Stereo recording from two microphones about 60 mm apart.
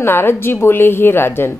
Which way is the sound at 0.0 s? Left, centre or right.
Left.